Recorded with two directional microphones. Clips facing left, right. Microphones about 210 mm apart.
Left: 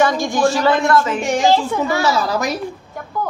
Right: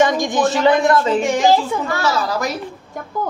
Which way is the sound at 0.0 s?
15° right (ahead or behind).